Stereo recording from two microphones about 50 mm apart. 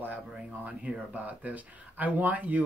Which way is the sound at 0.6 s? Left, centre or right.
Right.